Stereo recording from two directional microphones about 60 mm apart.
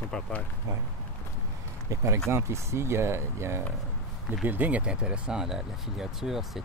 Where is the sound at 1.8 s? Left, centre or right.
Right.